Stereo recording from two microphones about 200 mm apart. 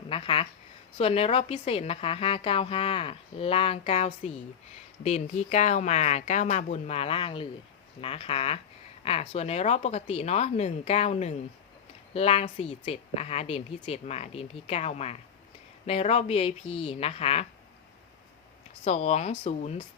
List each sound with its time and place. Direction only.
0.1 s a woman's voice: 25° left (ahead or behind)
18.9 s a woman's voice: 30° left (ahead or behind)